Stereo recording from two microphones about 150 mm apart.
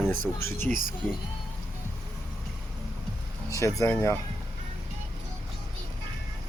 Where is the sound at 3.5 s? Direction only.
20° left (ahead or behind).